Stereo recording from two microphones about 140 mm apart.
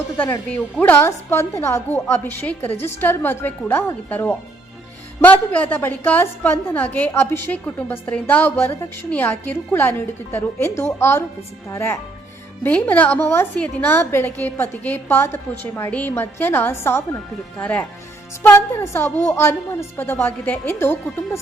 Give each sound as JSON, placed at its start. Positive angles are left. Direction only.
{"t": 0.2, "sound": "a woman's voice", "side_deg": 10}